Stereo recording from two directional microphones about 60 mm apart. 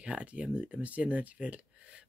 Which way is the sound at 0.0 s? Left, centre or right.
Centre.